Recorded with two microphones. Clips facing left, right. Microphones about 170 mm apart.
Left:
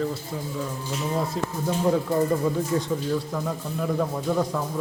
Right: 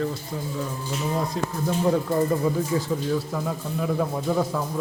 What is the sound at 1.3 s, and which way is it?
Speech, centre (ahead or behind).